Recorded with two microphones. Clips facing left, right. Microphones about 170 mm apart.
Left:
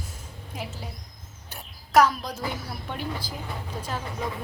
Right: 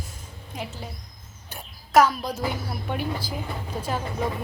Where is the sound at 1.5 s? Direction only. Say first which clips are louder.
Right 1 dB; centre (ahead or behind).